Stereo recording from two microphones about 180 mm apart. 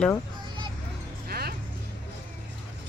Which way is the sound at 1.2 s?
60° right (ahead or behind).